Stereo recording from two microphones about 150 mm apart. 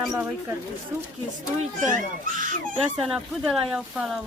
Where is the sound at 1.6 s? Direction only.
60° right (ahead or behind).